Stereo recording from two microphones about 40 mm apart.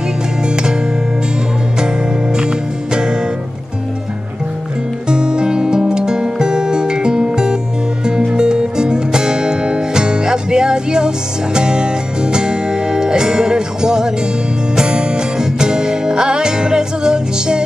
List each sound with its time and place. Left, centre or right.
2.3 s music: centre
5.0 s music: right